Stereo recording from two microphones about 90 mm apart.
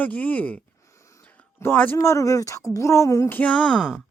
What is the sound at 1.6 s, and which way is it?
Speech, 20° left (ahead or behind).